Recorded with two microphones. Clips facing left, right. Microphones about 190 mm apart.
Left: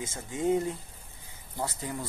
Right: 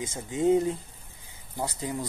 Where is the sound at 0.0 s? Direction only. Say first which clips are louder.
Right 4 dB; 20° right (ahead or behind).